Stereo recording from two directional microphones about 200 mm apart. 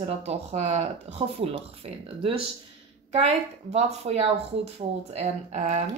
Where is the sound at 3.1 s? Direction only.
30° right (ahead or behind).